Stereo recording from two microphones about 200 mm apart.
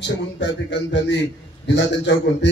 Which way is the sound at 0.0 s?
60° left (ahead or behind).